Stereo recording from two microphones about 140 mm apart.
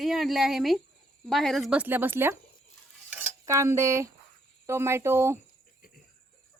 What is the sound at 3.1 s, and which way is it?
Cutlery, 15° right (ahead or behind).